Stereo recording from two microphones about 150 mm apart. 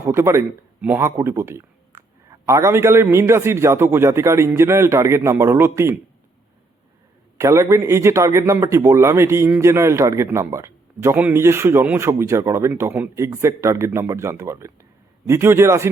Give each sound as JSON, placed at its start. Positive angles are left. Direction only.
{"t": 0.0, "sound": "a man's voice", "side_deg": -15}
{"t": 7.3, "sound": "a man's voice", "side_deg": -20}